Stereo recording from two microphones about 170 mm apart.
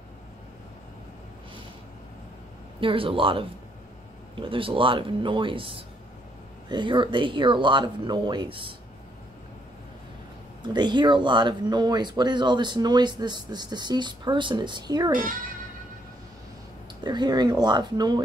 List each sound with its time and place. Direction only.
2.8 s speech: 30° right (ahead or behind)
10.6 s speech: 25° right (ahead or behind)
17.0 s speech: 25° right (ahead or behind)